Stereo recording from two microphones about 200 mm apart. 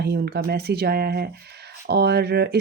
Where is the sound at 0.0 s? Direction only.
55° right (ahead or behind).